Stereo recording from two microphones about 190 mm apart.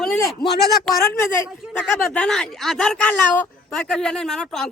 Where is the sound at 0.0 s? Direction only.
Centre (ahead or behind).